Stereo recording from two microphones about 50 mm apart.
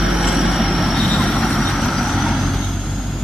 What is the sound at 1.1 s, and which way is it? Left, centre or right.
Vehicle, centre.